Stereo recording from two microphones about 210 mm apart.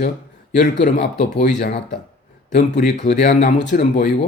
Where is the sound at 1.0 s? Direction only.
55° left (ahead or behind).